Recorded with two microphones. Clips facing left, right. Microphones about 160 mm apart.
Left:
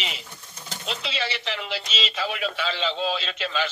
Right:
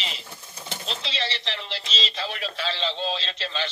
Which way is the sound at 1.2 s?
30° right (ahead or behind).